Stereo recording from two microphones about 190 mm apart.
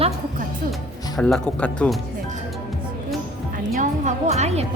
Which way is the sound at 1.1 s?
Centre (ahead or behind).